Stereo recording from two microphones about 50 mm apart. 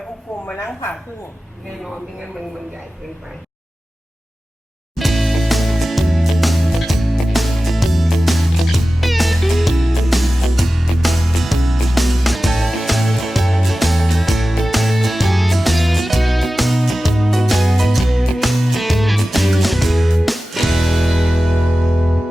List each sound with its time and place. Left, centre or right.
0.4 s speech: left
4.9 s music: centre